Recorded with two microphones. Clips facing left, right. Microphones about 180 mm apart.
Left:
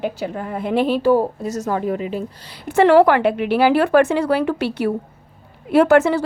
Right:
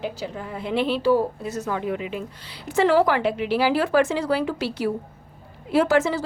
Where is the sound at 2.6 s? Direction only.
60° left (ahead or behind).